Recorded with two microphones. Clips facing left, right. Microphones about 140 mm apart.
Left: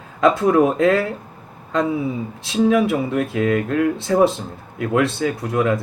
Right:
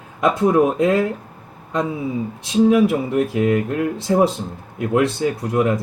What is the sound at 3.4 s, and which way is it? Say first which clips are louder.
Speech: even; 20° right (ahead or behind).